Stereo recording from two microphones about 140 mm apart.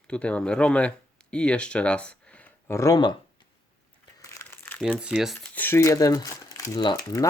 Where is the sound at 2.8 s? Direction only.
25° left (ahead or behind).